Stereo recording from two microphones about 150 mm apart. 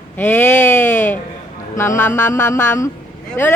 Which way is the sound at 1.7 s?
20° left (ahead or behind).